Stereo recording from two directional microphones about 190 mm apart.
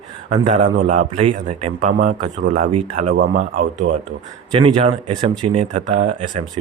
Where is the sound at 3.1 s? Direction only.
70° right (ahead or behind).